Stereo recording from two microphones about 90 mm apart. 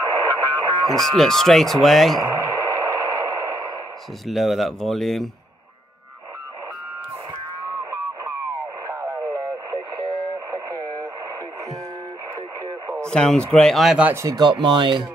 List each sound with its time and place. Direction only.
0.2 s radio: 45° right (ahead or behind)
0.8 s speech: 5° left (ahead or behind)
2.2 s music: 35° right (ahead or behind)
4.3 s speech: centre (ahead or behind)
10.5 s radio: 40° right (ahead or behind)
13.0 s a man's voice: 10° left (ahead or behind)
14.2 s speech: 50° right (ahead or behind)